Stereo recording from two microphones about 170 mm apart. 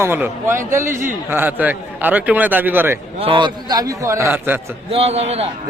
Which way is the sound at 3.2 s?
30° right (ahead or behind).